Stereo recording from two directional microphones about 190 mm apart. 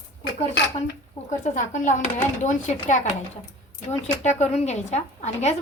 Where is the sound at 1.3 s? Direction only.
40° left (ahead or behind).